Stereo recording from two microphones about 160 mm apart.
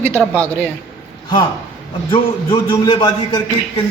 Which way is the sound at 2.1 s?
30° left (ahead or behind).